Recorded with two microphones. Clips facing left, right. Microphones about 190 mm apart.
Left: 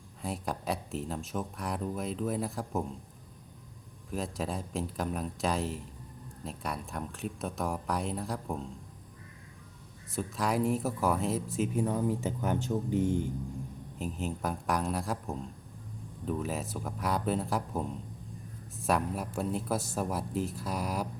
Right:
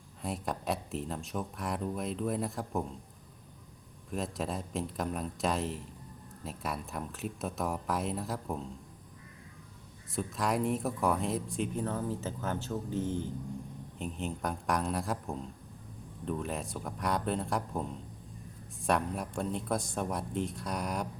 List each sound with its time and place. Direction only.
0.2 s speech: centre (ahead or behind)
4.1 s speech: centre (ahead or behind)
10.1 s speech: centre (ahead or behind)
14.0 s speech: centre (ahead or behind)